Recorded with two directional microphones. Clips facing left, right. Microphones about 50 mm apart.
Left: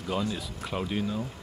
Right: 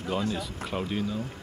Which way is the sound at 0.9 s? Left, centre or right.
Centre.